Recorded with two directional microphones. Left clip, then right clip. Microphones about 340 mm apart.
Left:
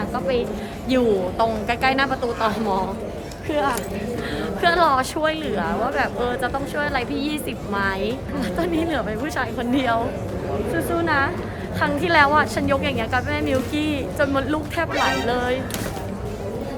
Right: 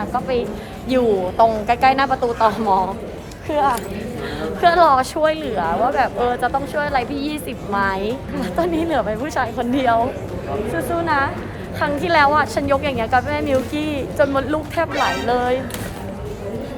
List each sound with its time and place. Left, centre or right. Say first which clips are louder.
0.0 s a woman's voice: right 2 dB; centre